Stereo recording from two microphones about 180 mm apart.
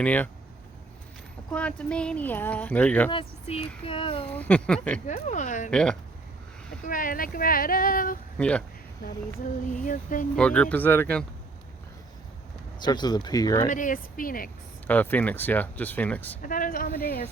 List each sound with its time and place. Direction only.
0.0 s speech: 10° left (ahead or behind)
1.5 s speech: 5° left (ahead or behind)
3.1 s speech: 30° left (ahead or behind)
4.4 s speech: 10° left (ahead or behind)
5.0 s speech: 45° left (ahead or behind)
5.7 s speech: 5° left (ahead or behind)
6.8 s speech: 50° left (ahead or behind)
8.4 s speech: 5° left (ahead or behind)
9.8 s speech: 50° left (ahead or behind)
10.3 s speech: 5° left (ahead or behind)
12.8 s speech: 25° left (ahead or behind)
13.7 s speech: 45° left (ahead or behind)
14.8 s speech: 10° left (ahead or behind)
16.4 s speech: 50° left (ahead or behind)